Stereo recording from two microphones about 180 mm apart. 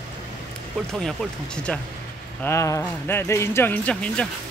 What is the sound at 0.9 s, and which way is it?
Speech, 5° left (ahead or behind).